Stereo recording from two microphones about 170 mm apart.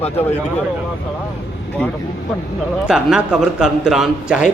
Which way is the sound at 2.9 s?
5° right (ahead or behind).